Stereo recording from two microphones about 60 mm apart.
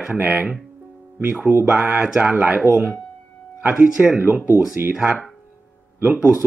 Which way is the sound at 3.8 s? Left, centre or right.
Right.